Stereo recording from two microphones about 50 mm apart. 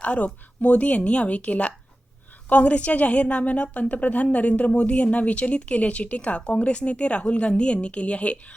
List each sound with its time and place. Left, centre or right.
0.0 s a woman's voice: left